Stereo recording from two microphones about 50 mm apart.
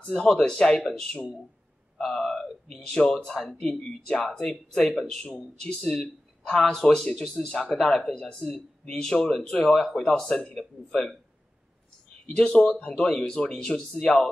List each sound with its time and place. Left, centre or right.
0.1 s speech: centre
5.1 s speech: centre
8.1 s speech: centre
10.9 s speech: centre
12.3 s speech: centre